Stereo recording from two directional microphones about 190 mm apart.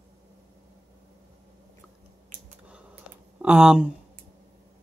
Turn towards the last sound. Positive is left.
turn(degrees=-5)  # may be behind; listen again after turning